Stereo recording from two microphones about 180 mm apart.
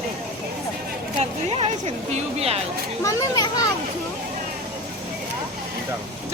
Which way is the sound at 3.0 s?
20° left (ahead or behind).